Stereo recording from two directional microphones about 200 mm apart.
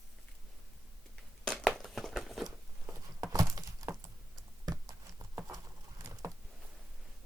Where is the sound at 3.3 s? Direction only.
15° right (ahead or behind).